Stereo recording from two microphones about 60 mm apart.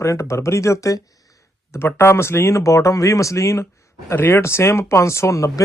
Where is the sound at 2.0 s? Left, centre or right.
Left.